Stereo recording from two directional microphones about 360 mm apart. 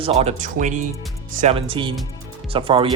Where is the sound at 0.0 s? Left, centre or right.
Centre.